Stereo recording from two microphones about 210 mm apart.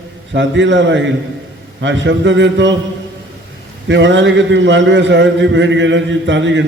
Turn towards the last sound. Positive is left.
turn(degrees=-60)  # may be behind; listen again after turning